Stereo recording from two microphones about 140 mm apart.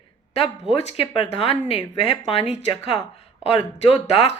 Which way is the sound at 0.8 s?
45° left (ahead or behind).